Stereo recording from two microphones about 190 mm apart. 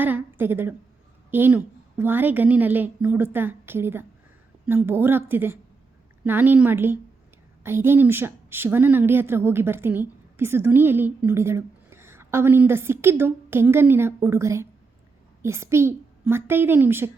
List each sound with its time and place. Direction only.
0.0 s a woman's voice: 10° right (ahead or behind)